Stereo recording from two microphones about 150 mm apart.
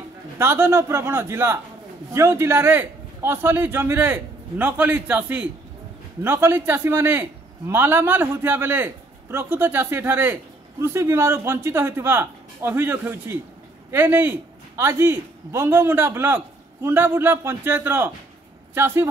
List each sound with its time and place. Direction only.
0.4 s a man's voice: 15° right (ahead or behind)